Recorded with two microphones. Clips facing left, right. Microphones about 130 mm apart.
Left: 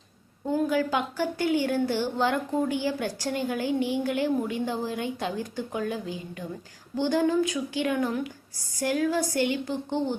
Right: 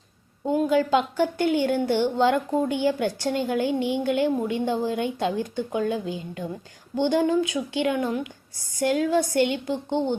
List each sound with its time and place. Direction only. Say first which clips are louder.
0.4 s a woman's voice: right 4 dB; 20° right (ahead or behind)